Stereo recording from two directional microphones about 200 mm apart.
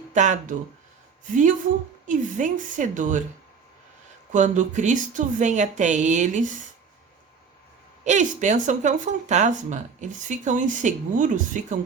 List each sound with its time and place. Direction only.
0.1 s speech: 35° right (ahead or behind)
2.0 s speech: 40° right (ahead or behind)
4.3 s speech: 40° right (ahead or behind)
8.0 s speech: 35° right (ahead or behind)